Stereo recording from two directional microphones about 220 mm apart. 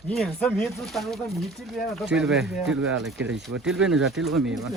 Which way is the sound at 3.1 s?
55° right (ahead or behind).